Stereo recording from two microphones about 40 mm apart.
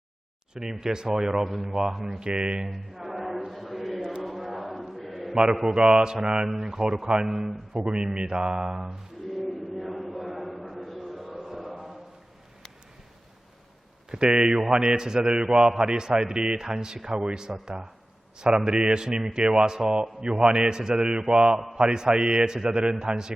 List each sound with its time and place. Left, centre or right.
0.5 s speech: centre
2.0 s a man's voice: centre
2.6 s a sound: centre
4.2 s chant: centre
5.5 s a man's voice: centre
7.9 s a man's voice: right
9.3 s a sound: centre
11.4 s chant: centre
14.1 s a man's voice: right
15.7 s speech: centre
16.0 s a man's voice: centre